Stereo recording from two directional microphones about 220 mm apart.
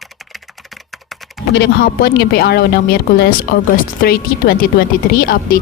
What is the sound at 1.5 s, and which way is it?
Speech, 45° left (ahead or behind).